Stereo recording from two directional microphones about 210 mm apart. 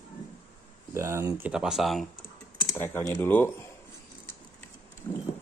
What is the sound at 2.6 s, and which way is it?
Speech, 10° left (ahead or behind).